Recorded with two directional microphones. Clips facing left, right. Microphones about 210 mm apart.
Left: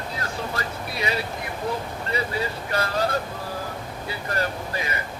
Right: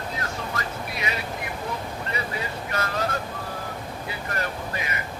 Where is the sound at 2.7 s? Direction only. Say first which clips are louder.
Left 3 dB; 35° left (ahead or behind).